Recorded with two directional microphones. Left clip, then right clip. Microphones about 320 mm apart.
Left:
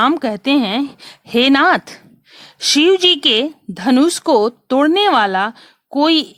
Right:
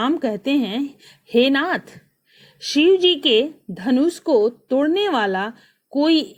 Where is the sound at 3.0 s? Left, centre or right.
Centre.